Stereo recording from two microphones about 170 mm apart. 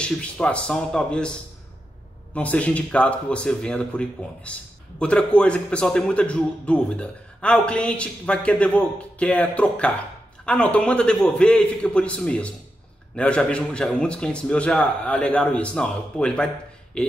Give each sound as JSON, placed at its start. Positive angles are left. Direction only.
{"t": 0.0, "sound": "a man's voice", "side_deg": 5}
{"t": 2.3, "sound": "a man's voice", "side_deg": 10}